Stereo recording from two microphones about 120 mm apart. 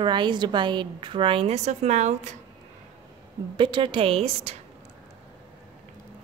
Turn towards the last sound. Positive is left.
turn(degrees=-55)  # may be behind; listen again after turning